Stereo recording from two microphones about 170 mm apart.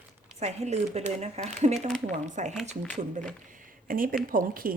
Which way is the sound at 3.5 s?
55° right (ahead or behind).